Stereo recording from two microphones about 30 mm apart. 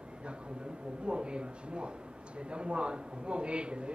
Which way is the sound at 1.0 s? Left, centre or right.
Right.